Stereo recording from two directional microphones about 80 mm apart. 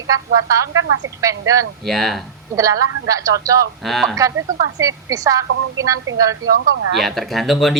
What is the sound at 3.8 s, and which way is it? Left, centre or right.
Speech, centre.